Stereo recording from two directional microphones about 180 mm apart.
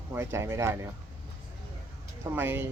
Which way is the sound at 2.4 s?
15° right (ahead or behind).